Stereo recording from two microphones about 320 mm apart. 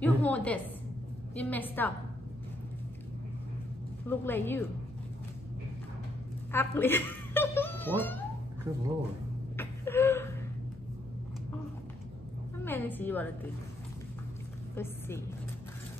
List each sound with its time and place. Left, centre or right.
0.0 s a woman's voice: centre
4.1 s speech: centre
6.5 s speech: centre
9.6 s a sound: centre
12.6 s a woman's voice: centre
14.8 s speech: centre